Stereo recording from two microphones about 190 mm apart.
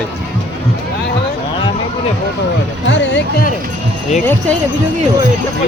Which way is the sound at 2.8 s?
70° left (ahead or behind).